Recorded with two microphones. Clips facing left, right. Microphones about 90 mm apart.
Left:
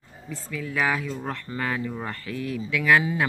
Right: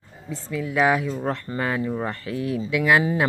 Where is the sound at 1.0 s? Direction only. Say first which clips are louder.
Right 5 dB; 30° right (ahead or behind).